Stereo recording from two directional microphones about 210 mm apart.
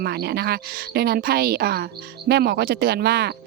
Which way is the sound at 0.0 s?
50° right (ahead or behind).